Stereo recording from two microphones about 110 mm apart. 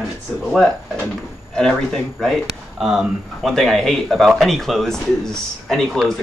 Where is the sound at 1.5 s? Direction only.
5° left (ahead or behind).